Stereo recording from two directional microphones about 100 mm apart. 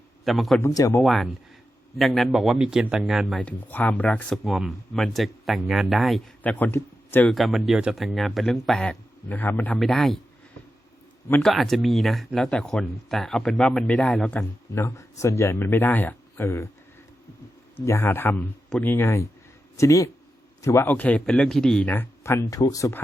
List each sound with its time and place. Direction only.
0.3 s speech: centre (ahead or behind)
0.6 s speech: 35° left (ahead or behind)
1.0 s speech: centre (ahead or behind)
3.3 s speech: 15° left (ahead or behind)
4.4 s speech: centre (ahead or behind)
6.4 s speech: 15° left (ahead or behind)
7.3 s speech: centre (ahead or behind); by 9.8 s 15° left (ahead or behind)
9.8 s speech: 5° left (ahead or behind)
11.4 s speech: centre (ahead or behind)
14.7 s speech: 30° left (ahead or behind)
17.7 s speech: 25° left (ahead or behind)
20.9 s speech: 15° left (ahead or behind)
21.2 s speech: 5° left (ahead or behind)
22.2 s speech: 30° left (ahead or behind)